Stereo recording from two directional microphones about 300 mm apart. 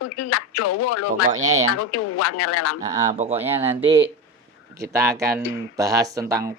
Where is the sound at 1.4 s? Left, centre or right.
Right.